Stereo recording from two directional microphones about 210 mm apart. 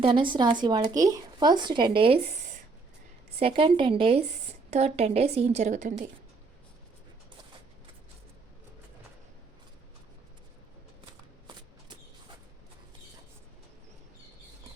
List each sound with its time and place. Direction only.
0.0 s a woman's voice: 25° right (ahead or behind)